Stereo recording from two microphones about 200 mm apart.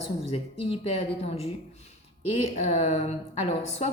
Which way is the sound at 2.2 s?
30° left (ahead or behind).